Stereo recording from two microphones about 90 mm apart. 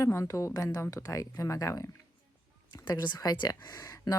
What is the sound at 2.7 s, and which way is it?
Speech, 50° left (ahead or behind).